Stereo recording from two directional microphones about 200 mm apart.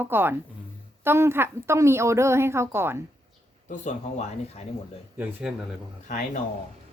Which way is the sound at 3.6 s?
40° left (ahead or behind).